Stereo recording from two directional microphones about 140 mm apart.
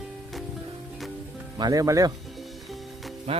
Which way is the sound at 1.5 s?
30° right (ahead or behind).